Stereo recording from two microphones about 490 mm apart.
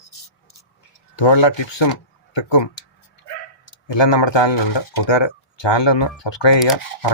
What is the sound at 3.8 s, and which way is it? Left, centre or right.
Speech, left.